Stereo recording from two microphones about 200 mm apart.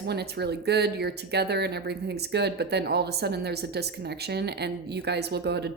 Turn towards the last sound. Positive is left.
turn(degrees=-55)  # may be behind; listen again after turning